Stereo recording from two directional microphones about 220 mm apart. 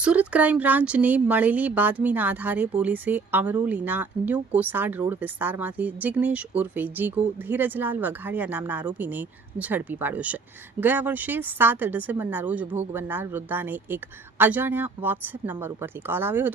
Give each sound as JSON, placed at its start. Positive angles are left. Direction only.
{"t": 0.0, "sound": "speech", "side_deg": -5}